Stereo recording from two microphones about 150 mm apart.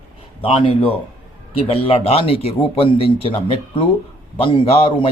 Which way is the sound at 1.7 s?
40° left (ahead or behind).